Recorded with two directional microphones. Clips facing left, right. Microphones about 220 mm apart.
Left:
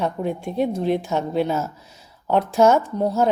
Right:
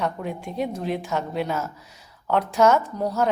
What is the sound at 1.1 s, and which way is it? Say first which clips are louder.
A woman's voice: left 4 dB; 25° left (ahead or behind).